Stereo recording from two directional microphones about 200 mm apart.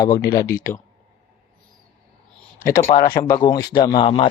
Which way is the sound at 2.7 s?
50° left (ahead or behind).